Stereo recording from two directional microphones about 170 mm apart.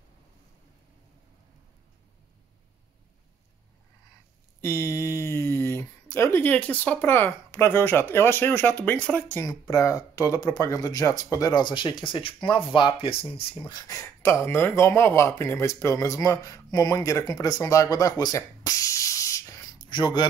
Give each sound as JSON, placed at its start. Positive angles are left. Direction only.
{"t": 4.6, "sound": "speech", "side_deg": 15}